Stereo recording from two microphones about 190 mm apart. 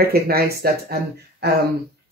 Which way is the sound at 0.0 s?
55° right (ahead or behind).